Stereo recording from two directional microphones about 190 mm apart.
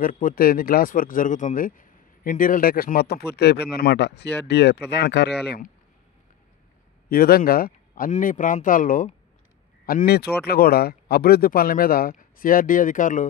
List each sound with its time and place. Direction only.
0.0 s speech: 45° left (ahead or behind); by 5.3 s 65° left (ahead or behind)
7.1 s speech: 50° left (ahead or behind)